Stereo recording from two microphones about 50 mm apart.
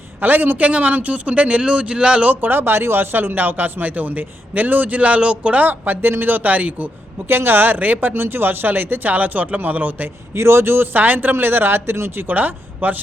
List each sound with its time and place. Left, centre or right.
0.2 s a man's voice: right
2.2 s speech: right
7.3 s speech: right
8.1 s speech: right
10.3 s a man's voice: right
10.9 s speech: right
12.3 s speech: right